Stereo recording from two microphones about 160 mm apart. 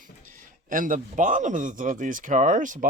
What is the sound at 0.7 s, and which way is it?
A man's voice, 55° right (ahead or behind).